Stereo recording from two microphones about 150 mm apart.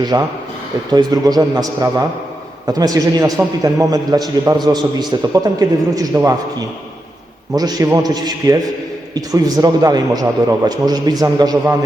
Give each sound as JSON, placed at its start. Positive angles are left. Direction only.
{"t": 0.0, "sound": "a man's voice", "side_deg": -25}
{"t": 7.5, "sound": "a man's voice", "side_deg": -25}